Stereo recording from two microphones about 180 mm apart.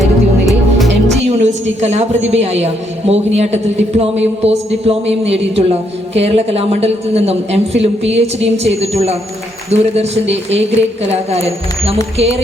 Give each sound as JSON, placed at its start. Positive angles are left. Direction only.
{"t": 0.0, "sound": "music", "side_deg": 0}
{"t": 1.2, "sound": "a sound", "side_deg": -40}
{"t": 2.3, "sound": "speech", "side_deg": -35}